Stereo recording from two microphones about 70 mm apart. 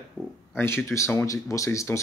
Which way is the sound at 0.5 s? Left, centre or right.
Left.